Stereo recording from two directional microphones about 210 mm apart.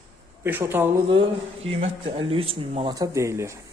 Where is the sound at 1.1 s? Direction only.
25° right (ahead or behind).